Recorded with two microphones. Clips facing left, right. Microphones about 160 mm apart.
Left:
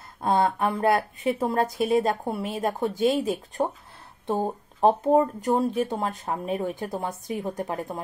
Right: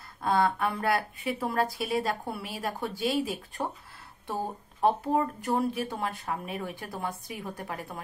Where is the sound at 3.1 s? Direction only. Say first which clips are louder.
Left 5 dB; 20° left (ahead or behind).